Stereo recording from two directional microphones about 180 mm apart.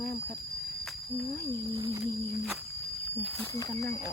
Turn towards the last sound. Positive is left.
turn(degrees=20)  # may be behind; listen again after turning